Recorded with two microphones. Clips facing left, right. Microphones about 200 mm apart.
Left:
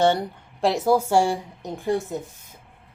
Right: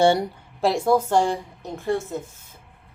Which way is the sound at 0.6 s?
Centre (ahead or behind).